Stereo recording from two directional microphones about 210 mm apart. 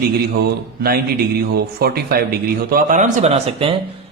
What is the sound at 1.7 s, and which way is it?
A man's voice, 50° right (ahead or behind).